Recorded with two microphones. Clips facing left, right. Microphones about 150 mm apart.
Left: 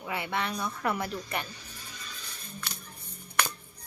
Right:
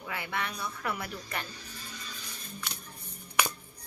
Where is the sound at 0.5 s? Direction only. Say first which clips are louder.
Left 5 dB; 40° left (ahead or behind).